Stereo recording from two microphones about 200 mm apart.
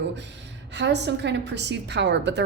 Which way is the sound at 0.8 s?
60° right (ahead or behind).